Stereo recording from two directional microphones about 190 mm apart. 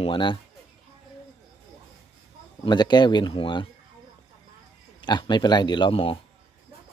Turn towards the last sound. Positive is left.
turn(degrees=30)  # may be behind; listen again after turning